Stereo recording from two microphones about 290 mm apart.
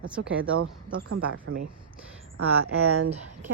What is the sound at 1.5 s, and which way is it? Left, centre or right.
Speech, right.